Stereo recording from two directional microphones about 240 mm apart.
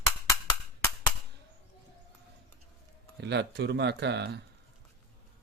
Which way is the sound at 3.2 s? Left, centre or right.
Right.